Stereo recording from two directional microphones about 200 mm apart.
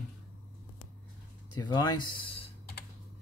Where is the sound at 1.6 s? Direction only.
20° left (ahead or behind).